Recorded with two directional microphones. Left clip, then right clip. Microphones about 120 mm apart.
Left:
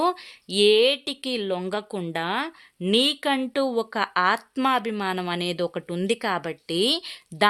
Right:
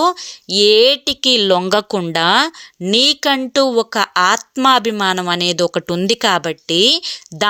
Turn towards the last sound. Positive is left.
turn(degrees=-25)  # may be behind; listen again after turning